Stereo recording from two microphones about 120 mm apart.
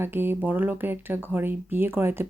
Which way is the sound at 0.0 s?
20° right (ahead or behind).